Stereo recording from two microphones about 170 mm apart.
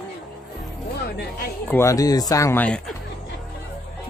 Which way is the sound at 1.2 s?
65° left (ahead or behind).